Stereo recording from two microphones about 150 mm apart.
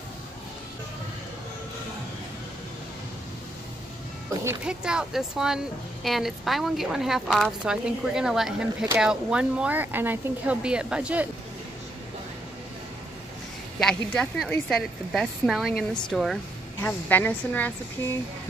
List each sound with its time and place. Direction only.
4.6 s speech: 5° right (ahead or behind)
13.7 s speech: 5° left (ahead or behind)
16.8 s speech: 10° left (ahead or behind)